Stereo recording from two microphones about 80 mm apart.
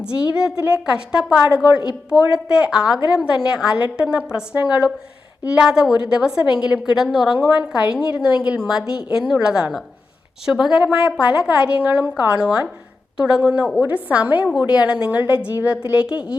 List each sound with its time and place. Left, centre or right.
0.0 s a woman's voice: centre